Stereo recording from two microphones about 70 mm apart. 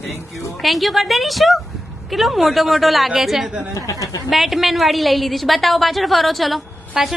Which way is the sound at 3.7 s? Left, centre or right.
Left.